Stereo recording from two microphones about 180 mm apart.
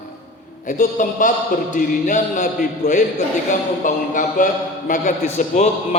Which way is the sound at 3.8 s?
45° left (ahead or behind).